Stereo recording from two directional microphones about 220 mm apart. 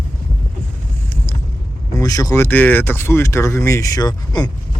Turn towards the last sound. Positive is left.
turn(degrees=20)  # may be behind; listen again after turning